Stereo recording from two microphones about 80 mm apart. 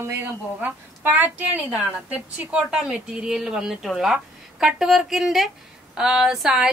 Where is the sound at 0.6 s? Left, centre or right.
Right.